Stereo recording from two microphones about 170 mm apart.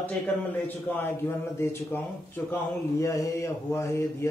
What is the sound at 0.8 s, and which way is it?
Speech, 15° left (ahead or behind).